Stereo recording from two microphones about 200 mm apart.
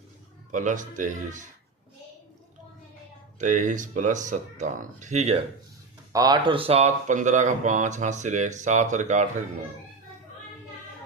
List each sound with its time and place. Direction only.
0.5 s speech: 40° right (ahead or behind)
3.3 s speech: 40° right (ahead or behind)
6.1 s speech: 20° right (ahead or behind); by 9.2 s 35° right (ahead or behind)